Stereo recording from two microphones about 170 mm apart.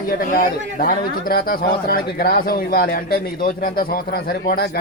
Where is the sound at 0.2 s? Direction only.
60° left (ahead or behind).